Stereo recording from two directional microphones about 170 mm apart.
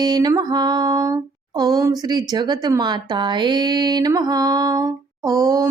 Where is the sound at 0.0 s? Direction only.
25° right (ahead or behind).